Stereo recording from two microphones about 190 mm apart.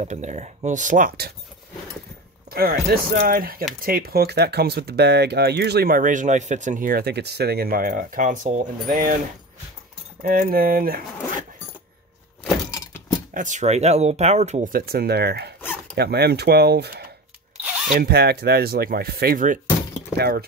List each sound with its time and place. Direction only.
0.0 s speech: 40° right (ahead or behind)
2.5 s speech: 50° right (ahead or behind)
10.2 s speech: 50° right (ahead or behind)
13.3 s speech: 40° right (ahead or behind)